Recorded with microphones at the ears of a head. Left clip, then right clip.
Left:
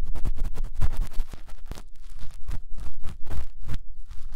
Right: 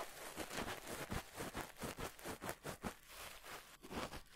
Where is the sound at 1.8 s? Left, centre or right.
Right.